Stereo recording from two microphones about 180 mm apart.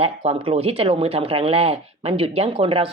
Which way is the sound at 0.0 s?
35° right (ahead or behind).